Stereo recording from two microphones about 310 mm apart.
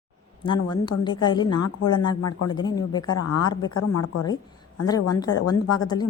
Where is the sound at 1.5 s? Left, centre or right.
Left.